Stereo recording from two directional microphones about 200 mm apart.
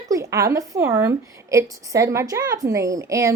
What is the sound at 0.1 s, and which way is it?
A woman's voice, 15° right (ahead or behind).